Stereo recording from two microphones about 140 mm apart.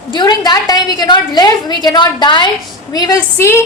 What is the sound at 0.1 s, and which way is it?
A woman's voice, 30° left (ahead or behind).